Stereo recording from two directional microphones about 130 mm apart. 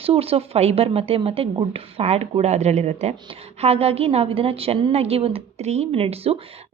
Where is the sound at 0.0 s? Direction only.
50° right (ahead or behind).